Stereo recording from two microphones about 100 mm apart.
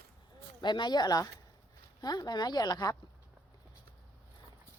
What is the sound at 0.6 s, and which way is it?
Speech, 50° left (ahead or behind).